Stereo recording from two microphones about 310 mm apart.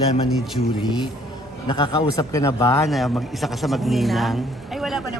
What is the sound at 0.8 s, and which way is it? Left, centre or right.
A man's voice, centre.